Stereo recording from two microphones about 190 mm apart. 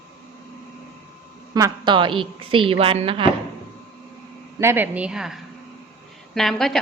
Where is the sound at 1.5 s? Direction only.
20° right (ahead or behind).